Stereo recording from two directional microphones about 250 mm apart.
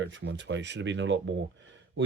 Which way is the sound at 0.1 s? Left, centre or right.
Right.